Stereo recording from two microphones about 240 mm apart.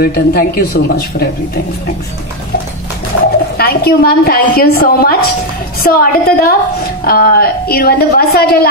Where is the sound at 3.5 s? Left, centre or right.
Left.